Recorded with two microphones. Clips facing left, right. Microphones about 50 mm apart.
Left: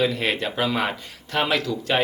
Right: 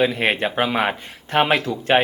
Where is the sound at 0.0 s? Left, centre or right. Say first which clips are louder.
Right 4 dB; right.